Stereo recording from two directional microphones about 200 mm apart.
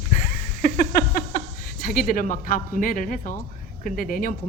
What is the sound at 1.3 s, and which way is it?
A woman's voice, 45° left (ahead or behind).